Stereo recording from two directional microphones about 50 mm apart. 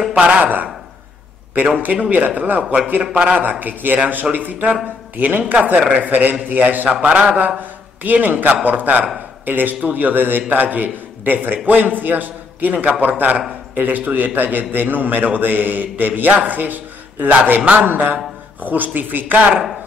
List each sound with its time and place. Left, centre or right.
0.1 s a man's voice: right
1.8 s a man's voice: right
3.0 s a man's voice: centre
3.3 s a man's voice: right
6.9 s speech: centre
8.0 s a man's voice: right
17.8 s a man's voice: right